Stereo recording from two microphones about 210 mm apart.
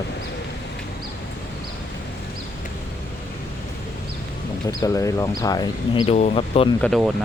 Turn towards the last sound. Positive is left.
turn(degrees=0)  # may be behind; listen again after turning